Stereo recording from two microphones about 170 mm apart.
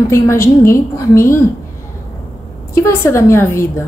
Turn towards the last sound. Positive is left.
turn(degrees=15)  # may be behind; listen again after turning